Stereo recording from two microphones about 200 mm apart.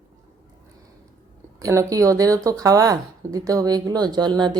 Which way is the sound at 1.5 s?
15° right (ahead or behind).